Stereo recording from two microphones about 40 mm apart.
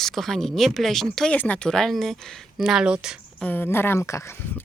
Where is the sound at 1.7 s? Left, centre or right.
Centre.